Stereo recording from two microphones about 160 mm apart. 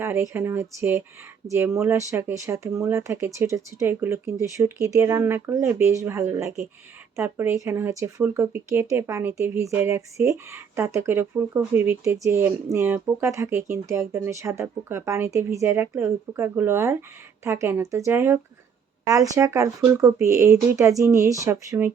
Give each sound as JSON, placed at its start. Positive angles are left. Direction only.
{"t": 0.0, "sound": "speech", "side_deg": -15}